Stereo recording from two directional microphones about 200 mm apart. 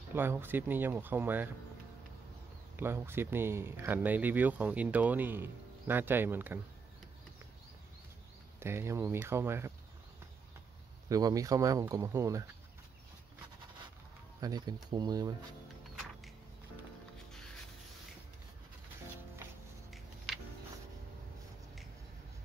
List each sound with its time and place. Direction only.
0.1 s speech: 10° right (ahead or behind)
2.7 s speech: 10° right (ahead or behind)
8.5 s speech: 15° right (ahead or behind)
11.1 s speech: 20° right (ahead or behind)
14.4 s speech: 20° right (ahead or behind)